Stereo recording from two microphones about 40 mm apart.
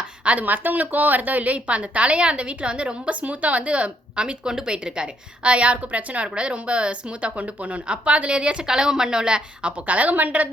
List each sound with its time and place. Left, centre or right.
0.4 s a woman's voice: right
4.4 s a woman's voice: centre
8.6 s a woman's voice: centre
9.8 s a woman's voice: right